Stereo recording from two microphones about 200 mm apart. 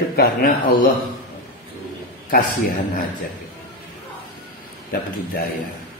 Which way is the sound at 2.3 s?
45° left (ahead or behind).